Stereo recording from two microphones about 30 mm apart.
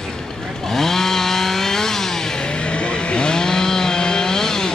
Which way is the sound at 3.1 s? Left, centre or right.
Left.